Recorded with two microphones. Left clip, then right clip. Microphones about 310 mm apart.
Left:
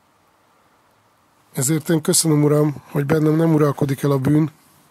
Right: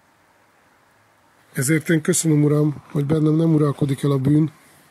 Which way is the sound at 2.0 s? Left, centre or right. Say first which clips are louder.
Left 2 dB; centre.